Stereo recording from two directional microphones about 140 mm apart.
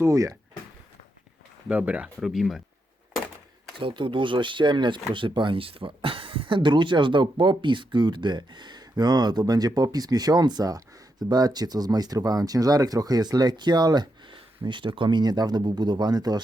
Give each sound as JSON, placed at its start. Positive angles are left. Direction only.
{"t": 0.0, "sound": "speech", "side_deg": -20}
{"t": 1.6, "sound": "speech", "side_deg": -10}
{"t": 3.8, "sound": "speech", "side_deg": -35}